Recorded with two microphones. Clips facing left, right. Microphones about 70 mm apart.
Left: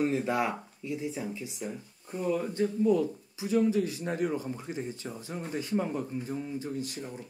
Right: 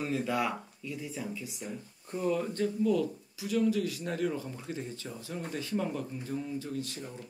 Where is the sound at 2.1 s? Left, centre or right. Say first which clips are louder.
Left 1 dB; centre.